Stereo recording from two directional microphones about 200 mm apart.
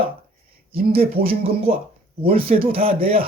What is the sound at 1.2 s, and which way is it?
Speech, 30° right (ahead or behind).